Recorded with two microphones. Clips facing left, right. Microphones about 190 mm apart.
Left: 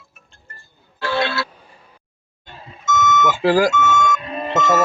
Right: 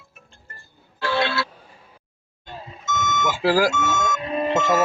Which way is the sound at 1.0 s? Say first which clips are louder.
Left 1 dB; 45° left (ahead or behind).